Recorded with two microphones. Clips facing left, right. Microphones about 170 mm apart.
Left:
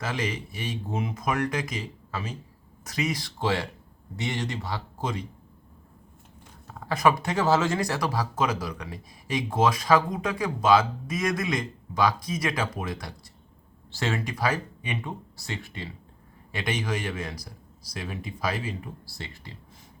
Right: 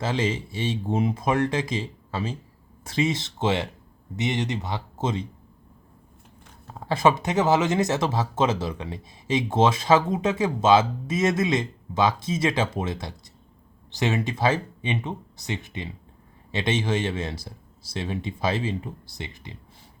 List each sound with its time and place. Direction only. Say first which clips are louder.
0.0 s speech: right 5 dB; 25° right (ahead or behind)
6.7 s speech: right 2 dB; 25° right (ahead or behind)